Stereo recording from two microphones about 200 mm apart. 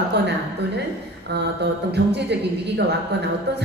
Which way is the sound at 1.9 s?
55° right (ahead or behind).